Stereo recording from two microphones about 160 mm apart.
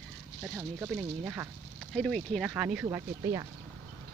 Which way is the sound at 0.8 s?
15° right (ahead or behind).